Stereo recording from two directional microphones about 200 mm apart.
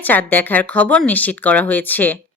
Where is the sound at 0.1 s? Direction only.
10° left (ahead or behind).